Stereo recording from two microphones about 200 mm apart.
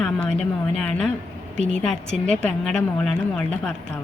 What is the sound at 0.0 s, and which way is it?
Speech, 5° left (ahead or behind).